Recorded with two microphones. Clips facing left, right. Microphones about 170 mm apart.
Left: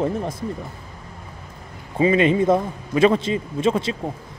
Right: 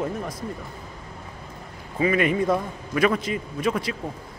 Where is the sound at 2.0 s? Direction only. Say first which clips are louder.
Left 5 dB; 25° left (ahead or behind).